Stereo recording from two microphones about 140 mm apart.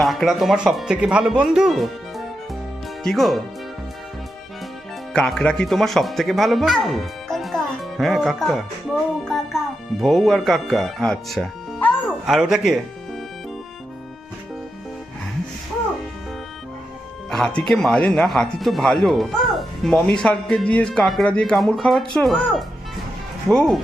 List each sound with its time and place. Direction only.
0.0 s speech: centre (ahead or behind)
5.1 s speech: 5° left (ahead or behind)
17.3 s speech: 5° left (ahead or behind)